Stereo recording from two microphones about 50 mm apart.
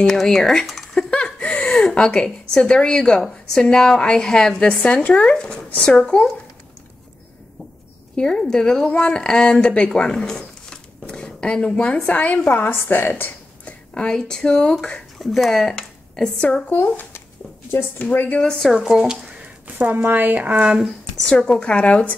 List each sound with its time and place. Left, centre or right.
0.0 s speech: centre
1.1 s a sound: left
1.9 s a woman's voice: centre
8.2 s a woman's voice: centre; by 13.1 s left
13.7 s speech: left
15.2 s speech: centre
16.3 s speech: left
16.8 s speech: left
18.1 s speech: left
18.7 s speech: centre
20.0 s a woman's voice: right
21.3 s speech: centre